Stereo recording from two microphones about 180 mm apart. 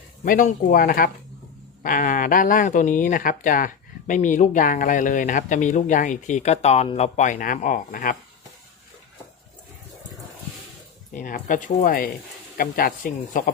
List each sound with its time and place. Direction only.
0.3 s speech: 50° left (ahead or behind)
11.1 s speech: 50° left (ahead or behind)